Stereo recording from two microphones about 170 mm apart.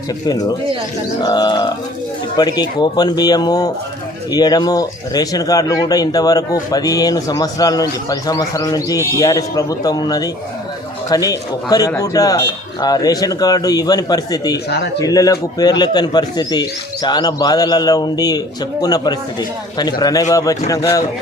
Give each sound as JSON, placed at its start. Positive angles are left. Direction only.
{"t": 0.3, "sound": "speech", "side_deg": 25}